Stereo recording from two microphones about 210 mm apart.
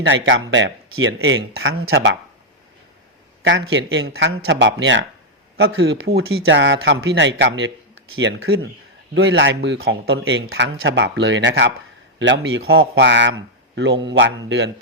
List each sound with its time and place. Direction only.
0.0 s speech: 60° right (ahead or behind)
3.4 s speech: 60° right (ahead or behind)
4.1 s speech: 75° right (ahead or behind)
4.4 s speech: 60° right (ahead or behind)
12.9 s speech: 60° right (ahead or behind)